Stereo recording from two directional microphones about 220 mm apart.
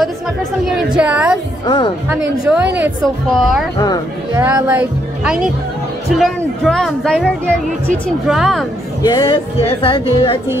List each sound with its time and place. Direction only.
0.7 s a woman's voice: 5° right (ahead or behind)
4.3 s a woman's voice: 10° right (ahead or behind)
9.0 s speech: 20° left (ahead or behind)